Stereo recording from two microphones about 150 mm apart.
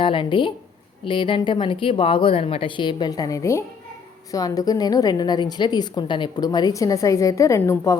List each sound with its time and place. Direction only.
0.0 s a woman's voice: 35° left (ahead or behind)